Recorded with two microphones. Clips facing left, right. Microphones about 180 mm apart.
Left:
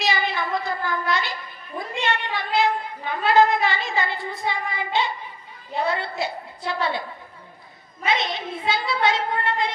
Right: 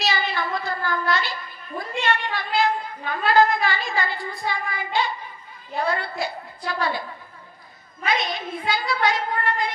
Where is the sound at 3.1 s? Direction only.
20° left (ahead or behind).